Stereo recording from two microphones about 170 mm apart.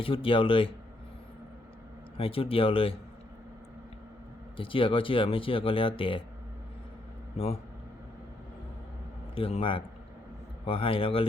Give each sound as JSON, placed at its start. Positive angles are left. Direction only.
{"t": 0.0, "sound": "speech", "side_deg": 30}
{"t": 2.1, "sound": "speech", "side_deg": 35}
{"t": 4.5, "sound": "speech", "side_deg": 30}
{"t": 9.3, "sound": "speech", "side_deg": 35}